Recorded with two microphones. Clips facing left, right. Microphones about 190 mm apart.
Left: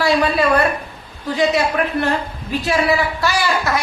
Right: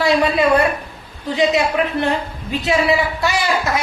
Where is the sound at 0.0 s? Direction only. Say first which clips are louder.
Right 1 dB; 20° right (ahead or behind).